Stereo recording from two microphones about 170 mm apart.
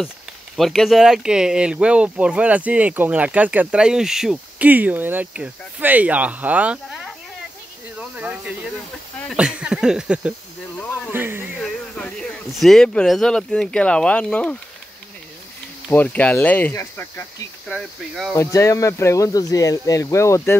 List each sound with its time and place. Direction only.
0.6 s speech: centre (ahead or behind)
8.2 s speech: 10° right (ahead or behind)
9.3 s a sound: 5° right (ahead or behind)
11.1 s speech: 15° right (ahead or behind)
11.6 s speech: 5° left (ahead or behind)
15.9 s speech: 10° left (ahead or behind)
17.6 s a sound: centre (ahead or behind)
18.3 s speech: 15° left (ahead or behind)